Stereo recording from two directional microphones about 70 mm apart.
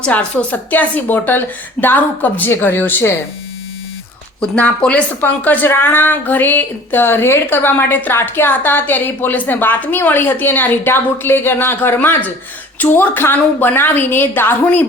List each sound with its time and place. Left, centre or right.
0.0 s speech: centre
4.8 s speech: centre